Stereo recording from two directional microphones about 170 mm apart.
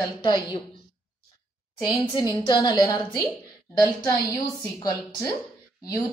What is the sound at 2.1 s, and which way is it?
A woman's voice, 20° left (ahead or behind).